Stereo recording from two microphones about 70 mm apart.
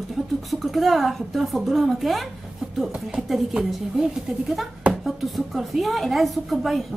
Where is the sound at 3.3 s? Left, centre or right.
Centre.